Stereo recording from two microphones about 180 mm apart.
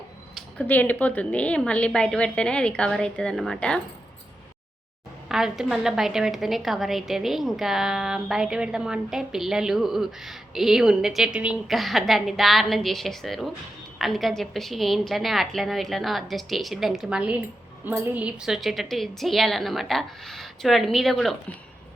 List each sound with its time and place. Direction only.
0.3 s a woman's voice: 10° left (ahead or behind)
5.3 s a woman's voice: centre (ahead or behind)